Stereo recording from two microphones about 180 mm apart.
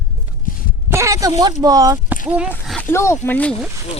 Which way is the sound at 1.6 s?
20° right (ahead or behind).